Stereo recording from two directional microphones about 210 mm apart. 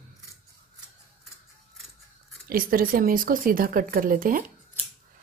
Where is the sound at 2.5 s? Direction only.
45° right (ahead or behind).